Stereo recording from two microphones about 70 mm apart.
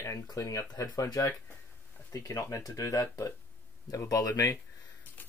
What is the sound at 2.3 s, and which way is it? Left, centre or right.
Speech, left.